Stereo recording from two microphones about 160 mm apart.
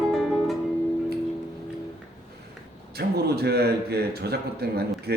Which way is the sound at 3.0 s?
80° right.